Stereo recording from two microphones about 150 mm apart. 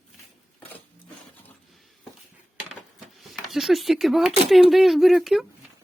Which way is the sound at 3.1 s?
Centre (ahead or behind).